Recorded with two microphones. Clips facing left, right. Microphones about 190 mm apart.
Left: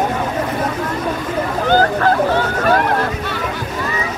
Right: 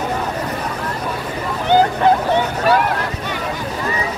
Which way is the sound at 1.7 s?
20° right (ahead or behind).